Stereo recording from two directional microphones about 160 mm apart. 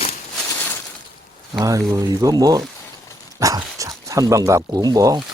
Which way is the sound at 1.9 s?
25° right (ahead or behind).